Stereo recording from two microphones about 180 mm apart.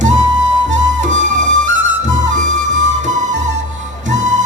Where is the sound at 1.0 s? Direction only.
45° right (ahead or behind).